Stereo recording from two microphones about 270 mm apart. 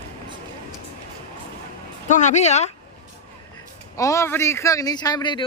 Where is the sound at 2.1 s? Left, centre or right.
Left.